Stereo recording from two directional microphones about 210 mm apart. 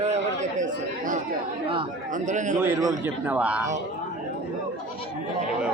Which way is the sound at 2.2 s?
35° right (ahead or behind).